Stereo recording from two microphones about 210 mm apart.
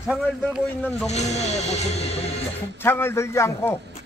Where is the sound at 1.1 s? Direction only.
30° left (ahead or behind).